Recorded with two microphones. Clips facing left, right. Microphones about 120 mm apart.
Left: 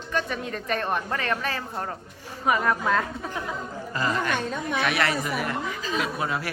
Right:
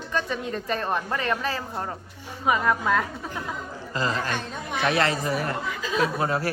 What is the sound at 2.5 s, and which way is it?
Speech, 10° right (ahead or behind).